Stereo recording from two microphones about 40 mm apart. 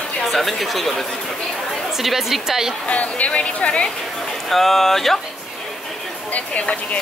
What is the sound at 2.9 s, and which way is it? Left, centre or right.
Speech, left.